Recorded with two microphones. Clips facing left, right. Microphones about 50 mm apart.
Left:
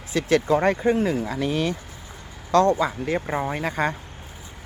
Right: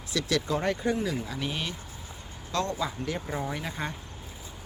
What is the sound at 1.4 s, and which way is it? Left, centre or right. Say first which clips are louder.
Speech: left 11 dB; left.